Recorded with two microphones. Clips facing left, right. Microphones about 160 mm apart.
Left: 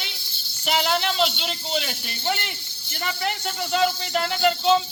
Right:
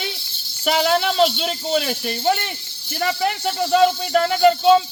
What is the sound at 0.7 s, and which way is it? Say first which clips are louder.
Speech: right 5 dB; 45° right (ahead or behind).